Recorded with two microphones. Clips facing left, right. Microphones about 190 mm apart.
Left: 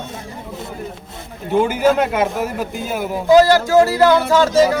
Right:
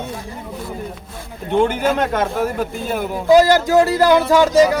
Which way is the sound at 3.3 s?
20° right (ahead or behind).